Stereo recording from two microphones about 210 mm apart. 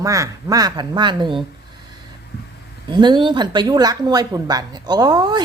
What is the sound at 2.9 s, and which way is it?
Speech, 20° right (ahead or behind).